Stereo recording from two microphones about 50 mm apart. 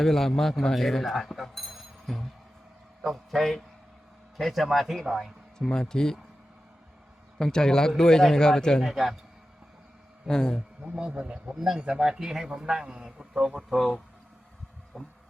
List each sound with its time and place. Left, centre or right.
0.0 s speech: centre
5.5 s a man's voice: centre
7.3 s a man's voice: centre
8.8 s speech: centre
10.2 s a man's voice: centre
11.1 s a man's voice: right
13.6 s speech: centre
14.9 s heart murmur: centre